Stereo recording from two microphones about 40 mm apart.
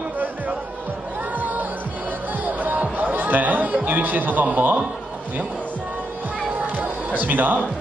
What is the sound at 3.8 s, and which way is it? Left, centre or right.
Speech, right.